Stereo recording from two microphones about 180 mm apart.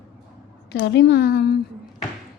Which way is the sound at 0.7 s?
75° left (ahead or behind).